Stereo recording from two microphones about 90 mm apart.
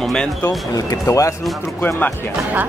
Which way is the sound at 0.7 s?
40° left (ahead or behind).